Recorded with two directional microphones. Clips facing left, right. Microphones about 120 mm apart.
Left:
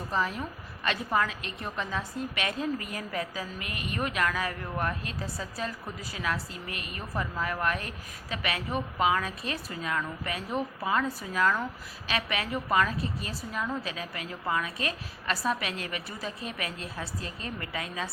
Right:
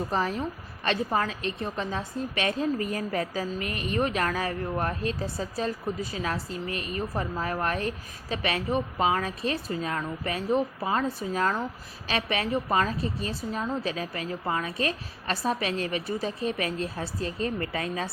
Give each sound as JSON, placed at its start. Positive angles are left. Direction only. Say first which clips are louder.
{"t": 0.1, "sound": "a woman's voice", "louder": "right 3 dB", "side_deg": -35}